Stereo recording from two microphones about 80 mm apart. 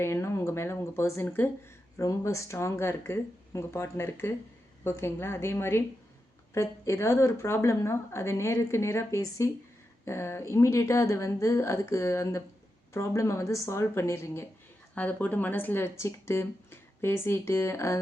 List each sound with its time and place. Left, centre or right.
0.0 s a sound: left
2.0 s speech: left
14.9 s speech: centre